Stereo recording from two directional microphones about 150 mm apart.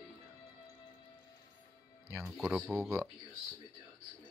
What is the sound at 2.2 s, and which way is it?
Speech, 5° right (ahead or behind).